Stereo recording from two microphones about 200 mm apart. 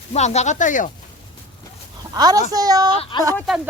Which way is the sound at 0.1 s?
35° left (ahead or behind).